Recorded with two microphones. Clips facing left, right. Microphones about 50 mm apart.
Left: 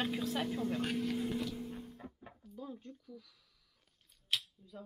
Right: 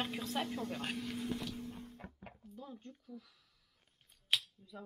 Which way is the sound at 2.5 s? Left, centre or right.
Centre.